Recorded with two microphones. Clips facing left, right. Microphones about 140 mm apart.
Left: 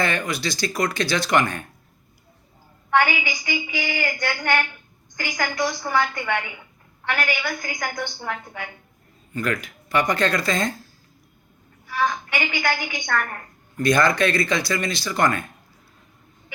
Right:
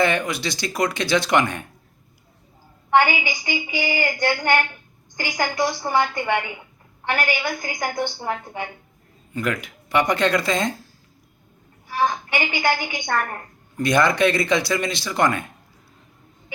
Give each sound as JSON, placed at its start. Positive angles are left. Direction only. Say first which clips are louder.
{"t": 0.0, "sound": "a woman's voice", "louder": "right 3 dB", "side_deg": -25}
{"t": 2.9, "sound": "a woman's voice", "louder": "right 2 dB", "side_deg": -25}
{"t": 11.9, "sound": "a woman's voice", "louder": "right 2 dB", "side_deg": -30}